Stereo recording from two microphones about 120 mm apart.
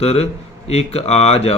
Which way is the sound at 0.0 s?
55° left (ahead or behind).